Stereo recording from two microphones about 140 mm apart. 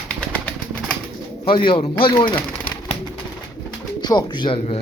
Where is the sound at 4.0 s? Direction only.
30° left (ahead or behind).